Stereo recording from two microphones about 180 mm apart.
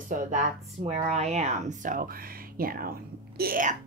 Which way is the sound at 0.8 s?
40° right (ahead or behind).